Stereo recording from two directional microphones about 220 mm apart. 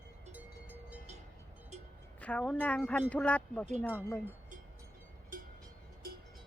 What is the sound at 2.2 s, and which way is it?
Speech, 5° left (ahead or behind).